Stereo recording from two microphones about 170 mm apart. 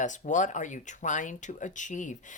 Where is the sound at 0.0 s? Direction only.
45° left (ahead or behind).